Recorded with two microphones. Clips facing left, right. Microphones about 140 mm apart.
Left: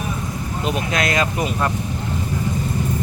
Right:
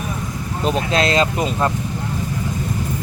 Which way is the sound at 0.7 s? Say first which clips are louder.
Right 4 dB; 25° right (ahead or behind).